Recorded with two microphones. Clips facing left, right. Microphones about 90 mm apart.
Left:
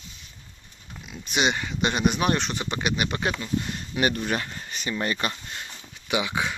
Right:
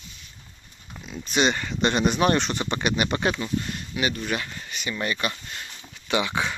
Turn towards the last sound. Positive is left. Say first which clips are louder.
# right 1 dB
turn(degrees=10)  # may be behind; listen again after turning